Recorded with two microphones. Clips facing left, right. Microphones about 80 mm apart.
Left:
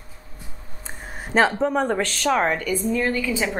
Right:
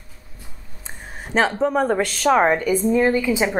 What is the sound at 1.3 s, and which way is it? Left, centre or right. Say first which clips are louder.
A woman's voice: even; centre.